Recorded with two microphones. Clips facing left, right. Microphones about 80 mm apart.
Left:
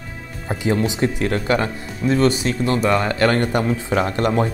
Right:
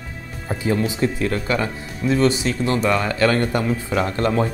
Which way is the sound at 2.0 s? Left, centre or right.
Centre.